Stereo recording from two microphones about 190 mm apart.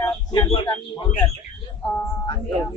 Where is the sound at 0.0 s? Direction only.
20° left (ahead or behind).